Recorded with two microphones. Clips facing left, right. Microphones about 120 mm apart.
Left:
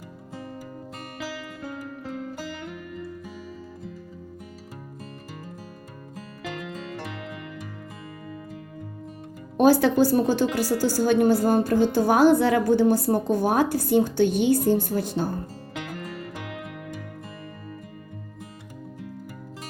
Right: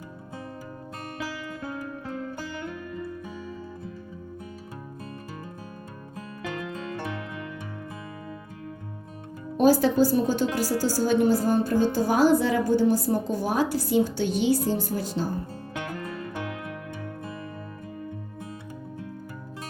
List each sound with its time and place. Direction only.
9.6 s a woman's voice: 65° left (ahead or behind)
13.2 s a woman's voice: 60° left (ahead or behind)